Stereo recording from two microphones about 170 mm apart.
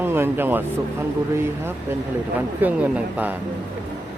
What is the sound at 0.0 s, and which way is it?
Speech, 10° right (ahead or behind).